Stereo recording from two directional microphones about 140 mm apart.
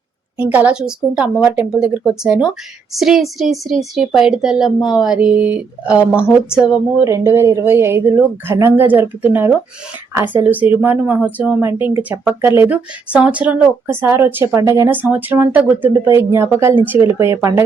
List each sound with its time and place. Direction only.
0.3 s a woman's voice: 10° right (ahead or behind)
7.0 s speech: 20° right (ahead or behind)